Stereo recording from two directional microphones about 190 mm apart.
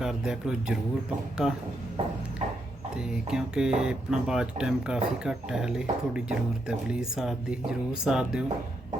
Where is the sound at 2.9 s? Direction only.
5° right (ahead or behind).